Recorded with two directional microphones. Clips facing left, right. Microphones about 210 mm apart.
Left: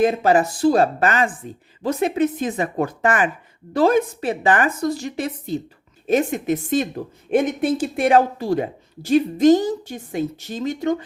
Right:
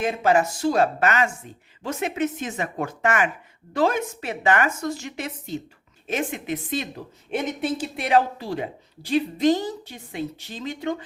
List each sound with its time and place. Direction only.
0.0 s a woman's voice: 35° left (ahead or behind)